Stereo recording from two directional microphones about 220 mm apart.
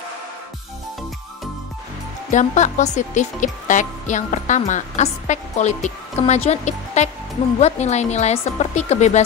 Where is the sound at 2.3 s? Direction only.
35° left (ahead or behind).